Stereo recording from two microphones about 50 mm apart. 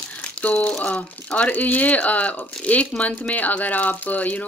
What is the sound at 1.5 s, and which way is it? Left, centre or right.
Speech, left.